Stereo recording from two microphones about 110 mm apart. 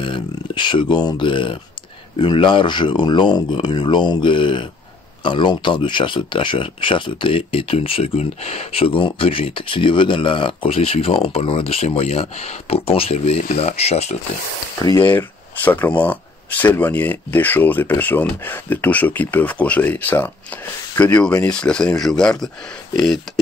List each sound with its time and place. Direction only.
0.0 s speech: 45° left (ahead or behind); by 14.1 s 75° left (ahead or behind)
15.0 s speech: 20° left (ahead or behind)